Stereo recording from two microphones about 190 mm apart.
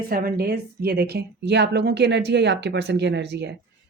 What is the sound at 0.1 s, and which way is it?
A woman's voice, 50° right (ahead or behind).